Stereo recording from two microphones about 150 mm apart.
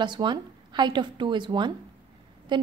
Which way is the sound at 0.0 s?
30° right (ahead or behind).